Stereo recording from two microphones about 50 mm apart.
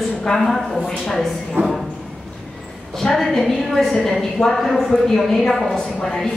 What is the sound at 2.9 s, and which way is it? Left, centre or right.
A woman's voice, centre.